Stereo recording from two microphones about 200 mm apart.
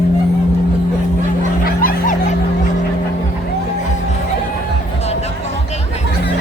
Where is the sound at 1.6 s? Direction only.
45° left (ahead or behind).